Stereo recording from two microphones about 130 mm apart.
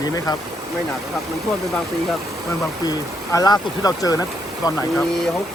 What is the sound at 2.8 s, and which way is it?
Speech, 30° left (ahead or behind).